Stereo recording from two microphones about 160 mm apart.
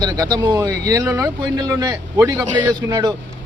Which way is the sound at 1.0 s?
10° right (ahead or behind).